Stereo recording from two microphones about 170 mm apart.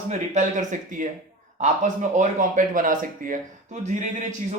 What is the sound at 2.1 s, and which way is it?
Speech, 50° right (ahead or behind).